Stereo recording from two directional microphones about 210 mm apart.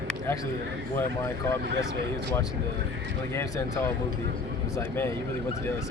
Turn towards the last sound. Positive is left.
turn(degrees=10)  # may be behind; listen again after turning